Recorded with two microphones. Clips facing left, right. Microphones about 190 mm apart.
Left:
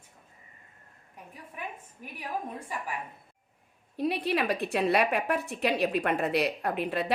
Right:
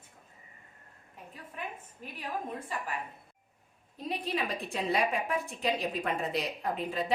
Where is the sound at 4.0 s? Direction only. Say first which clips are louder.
Left 6 dB; 70° left (ahead or behind).